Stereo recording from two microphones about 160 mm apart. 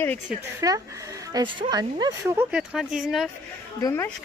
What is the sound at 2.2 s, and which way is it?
Speech, 10° right (ahead or behind).